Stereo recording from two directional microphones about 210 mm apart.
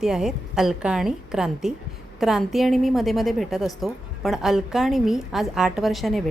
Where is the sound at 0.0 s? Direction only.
Centre (ahead or behind).